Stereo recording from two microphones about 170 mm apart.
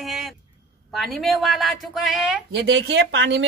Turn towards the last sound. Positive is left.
turn(degrees=-90)